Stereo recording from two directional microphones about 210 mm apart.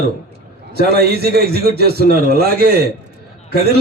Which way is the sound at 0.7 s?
50° right (ahead or behind).